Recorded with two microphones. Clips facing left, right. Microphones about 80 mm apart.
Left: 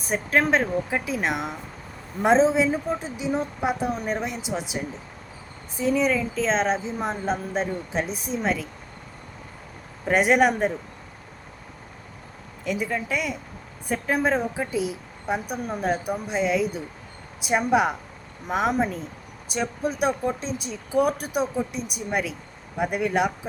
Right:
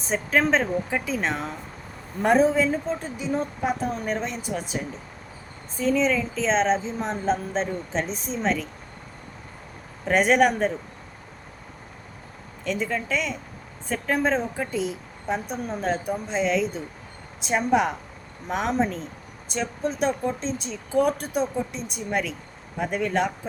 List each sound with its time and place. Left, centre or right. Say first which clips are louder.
0.1 s a woman's voice: even; centre
10.1 s a woman's voice: even; centre
12.6 s a woman's voice: even; centre